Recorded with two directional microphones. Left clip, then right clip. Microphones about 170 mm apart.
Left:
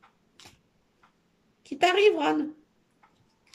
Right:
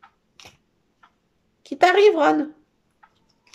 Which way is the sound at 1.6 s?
15° left (ahead or behind).